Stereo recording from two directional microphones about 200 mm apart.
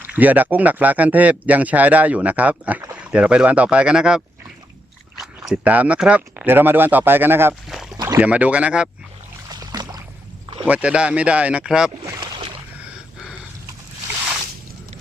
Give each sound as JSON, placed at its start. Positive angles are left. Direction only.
{"t": 0.0, "sound": "speech", "side_deg": -10}
{"t": 5.5, "sound": "speech", "side_deg": -5}
{"t": 9.5, "sound": "boat", "side_deg": -20}
{"t": 10.7, "sound": "speech", "side_deg": -5}
{"t": 12.0, "sound": "boat", "side_deg": -20}
{"t": 12.9, "sound": "a sound", "side_deg": -5}